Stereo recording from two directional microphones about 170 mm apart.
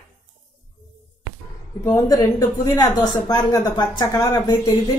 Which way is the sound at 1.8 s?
20° left (ahead or behind).